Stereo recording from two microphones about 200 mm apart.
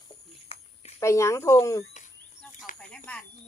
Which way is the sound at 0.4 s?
30° left (ahead or behind).